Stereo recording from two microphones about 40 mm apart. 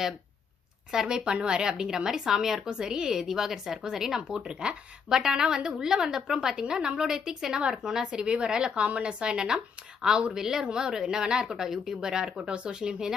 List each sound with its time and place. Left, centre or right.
1.0 s a woman's voice: right
2.6 s a woman's voice: right
4.2 s a woman's voice: right
8.7 s a woman's voice: right